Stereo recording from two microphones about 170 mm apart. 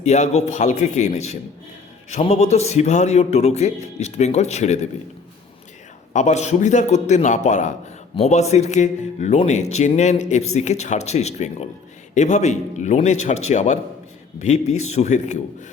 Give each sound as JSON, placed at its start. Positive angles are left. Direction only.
{"t": 0.0, "sound": "a man's voice", "side_deg": 40}
{"t": 6.1, "sound": "a man's voice", "side_deg": 45}